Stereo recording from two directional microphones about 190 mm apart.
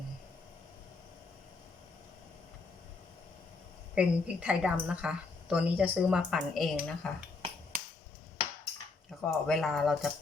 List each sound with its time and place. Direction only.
3.9 s a woman's voice: 5° right (ahead or behind)
7.7 s a sound: 45° right (ahead or behind)
9.2 s a woman's voice: centre (ahead or behind)